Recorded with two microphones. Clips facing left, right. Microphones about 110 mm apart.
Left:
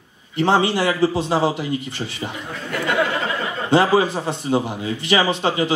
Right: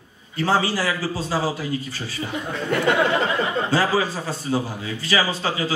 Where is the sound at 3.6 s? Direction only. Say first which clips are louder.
Left 9 dB; 20° left (ahead or behind).